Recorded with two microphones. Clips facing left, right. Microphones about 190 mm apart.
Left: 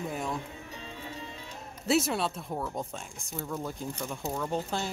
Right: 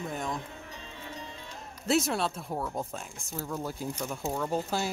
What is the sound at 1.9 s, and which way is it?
Speech, centre (ahead or behind).